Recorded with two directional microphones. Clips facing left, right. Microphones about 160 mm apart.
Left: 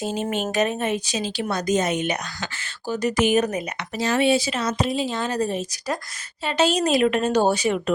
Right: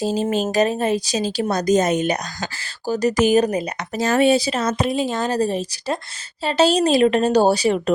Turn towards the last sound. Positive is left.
turn(degrees=-35)  # may be behind; listen again after turning